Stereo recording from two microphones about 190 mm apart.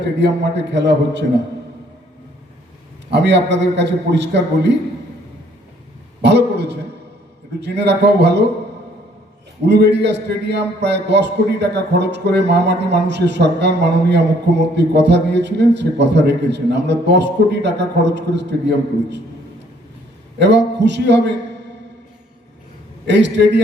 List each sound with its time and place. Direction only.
0.0 s a man's voice: 65° right (ahead or behind)
3.1 s a man's voice: 65° right (ahead or behind)
6.2 s a man's voice: 60° right (ahead or behind)
9.6 s a man's voice: 60° right (ahead or behind)
20.4 s a man's voice: 65° right (ahead or behind)
23.0 s a man's voice: 65° right (ahead or behind)